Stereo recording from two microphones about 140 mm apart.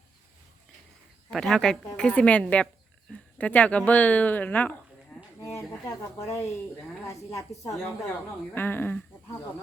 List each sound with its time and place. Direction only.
1.3 s speech: 5° left (ahead or behind)